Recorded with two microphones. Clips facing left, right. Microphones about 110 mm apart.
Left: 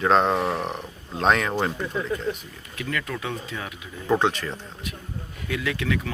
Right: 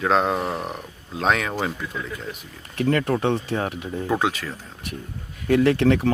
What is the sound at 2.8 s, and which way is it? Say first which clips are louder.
Speech: right 9 dB; 40° right (ahead or behind).